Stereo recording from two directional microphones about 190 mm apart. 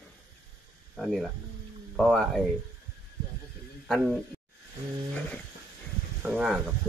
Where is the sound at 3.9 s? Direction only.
Centre (ahead or behind).